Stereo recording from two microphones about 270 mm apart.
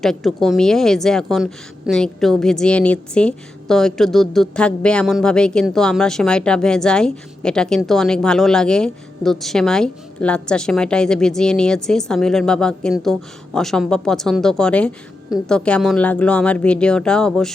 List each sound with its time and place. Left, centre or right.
0.0 s a woman's voice: centre